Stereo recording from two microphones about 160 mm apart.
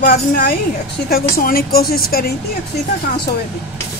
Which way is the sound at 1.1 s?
70° left (ahead or behind).